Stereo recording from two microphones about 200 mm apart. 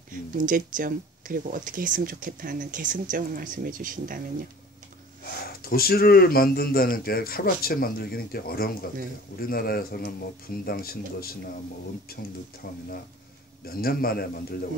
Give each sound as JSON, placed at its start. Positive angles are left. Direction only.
{"t": 0.1, "sound": "speech", "side_deg": -40}
{"t": 5.2, "sound": "speech", "side_deg": 50}